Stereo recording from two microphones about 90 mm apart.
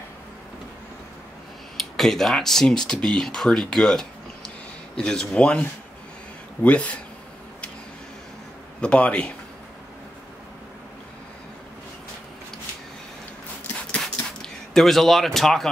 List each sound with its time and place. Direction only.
1.8 s a man's voice: centre (ahead or behind)
8.8 s a man's voice: 10° left (ahead or behind)
14.4 s a man's voice: 5° left (ahead or behind)